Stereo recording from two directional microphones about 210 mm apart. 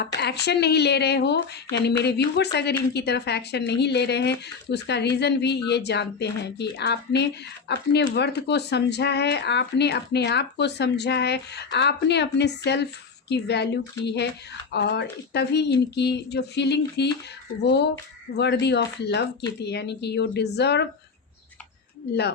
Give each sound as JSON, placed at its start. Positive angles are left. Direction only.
{"t": 0.2, "sound": "speech", "side_deg": 50}